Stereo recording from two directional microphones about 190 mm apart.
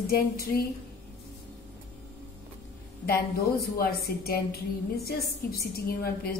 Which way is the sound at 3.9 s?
55° left (ahead or behind).